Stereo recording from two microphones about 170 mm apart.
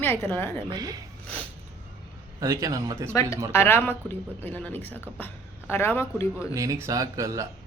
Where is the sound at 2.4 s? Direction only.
20° right (ahead or behind).